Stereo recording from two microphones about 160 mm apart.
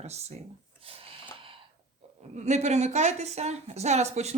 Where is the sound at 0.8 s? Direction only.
35° right (ahead or behind).